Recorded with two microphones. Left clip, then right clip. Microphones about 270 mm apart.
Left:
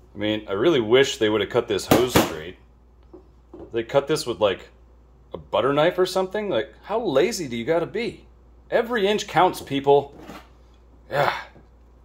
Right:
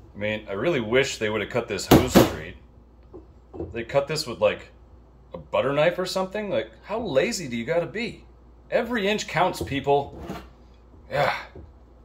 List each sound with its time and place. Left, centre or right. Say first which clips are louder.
0.2 s speech: left 4 dB; left
3.7 s speech: left 3 dB; left
11.1 s speech: left 2 dB; left